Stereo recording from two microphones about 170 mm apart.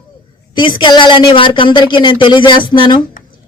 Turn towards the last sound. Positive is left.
turn(degrees=25)  # may be behind; listen again after turning